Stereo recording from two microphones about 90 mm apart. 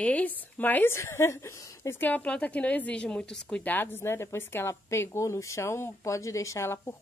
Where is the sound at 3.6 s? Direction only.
20° left (ahead or behind).